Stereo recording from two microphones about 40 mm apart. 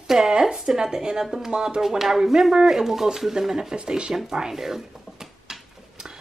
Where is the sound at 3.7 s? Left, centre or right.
Right.